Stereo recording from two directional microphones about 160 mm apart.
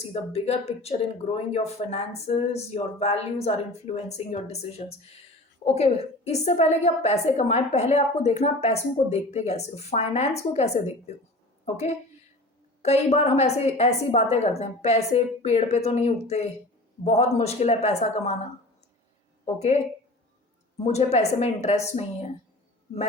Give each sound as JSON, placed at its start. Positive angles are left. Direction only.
{"t": 0.0, "sound": "a woman's voice", "side_deg": 40}
{"t": 19.5, "sound": "a woman's voice", "side_deg": 45}
{"t": 20.8, "sound": "a woman's voice", "side_deg": 40}